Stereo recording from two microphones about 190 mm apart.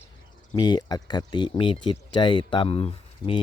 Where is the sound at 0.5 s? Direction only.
25° left (ahead or behind).